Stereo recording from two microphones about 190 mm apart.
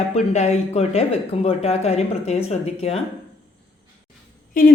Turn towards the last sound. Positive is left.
turn(degrees=45)  # may be behind; listen again after turning